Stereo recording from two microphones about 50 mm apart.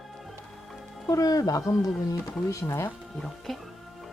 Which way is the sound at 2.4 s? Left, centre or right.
Left.